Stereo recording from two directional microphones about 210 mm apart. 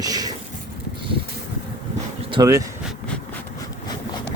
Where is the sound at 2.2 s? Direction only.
20° right (ahead or behind).